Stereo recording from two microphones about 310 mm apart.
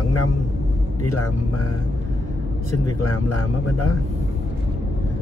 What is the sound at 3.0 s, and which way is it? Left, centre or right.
Speech, left.